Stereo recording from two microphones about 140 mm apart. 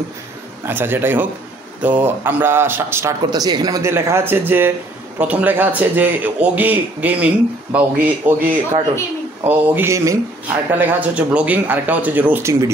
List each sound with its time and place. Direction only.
0.7 s speech: 15° right (ahead or behind)
3.3 s speech: 30° right (ahead or behind); by 12.5 s 15° right (ahead or behind)